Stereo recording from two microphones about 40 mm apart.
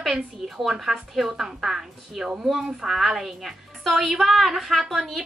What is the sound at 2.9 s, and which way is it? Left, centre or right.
A woman's voice, centre.